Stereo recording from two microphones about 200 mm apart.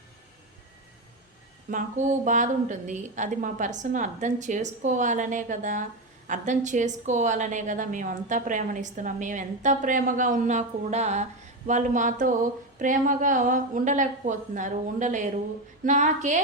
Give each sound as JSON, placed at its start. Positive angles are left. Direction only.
{"t": 1.7, "sound": "a woman's voice", "side_deg": -40}